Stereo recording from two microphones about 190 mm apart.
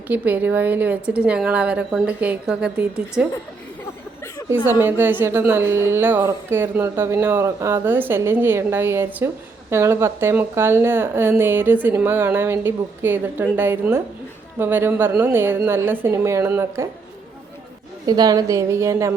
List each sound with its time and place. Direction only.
0.1 s a woman's voice: 10° right (ahead or behind)
4.4 s a woman's voice: 10° right (ahead or behind)
18.0 s a woman's voice: 20° right (ahead or behind)